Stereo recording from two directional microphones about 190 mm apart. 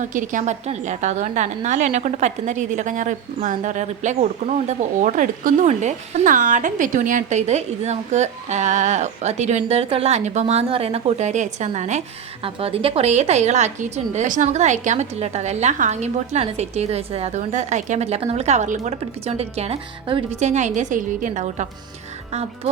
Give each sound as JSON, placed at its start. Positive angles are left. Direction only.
{"t": 0.0, "sound": "a woman's voice", "side_deg": -40}